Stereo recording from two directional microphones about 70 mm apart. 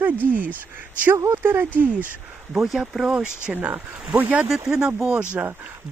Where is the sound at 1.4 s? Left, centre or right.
Right.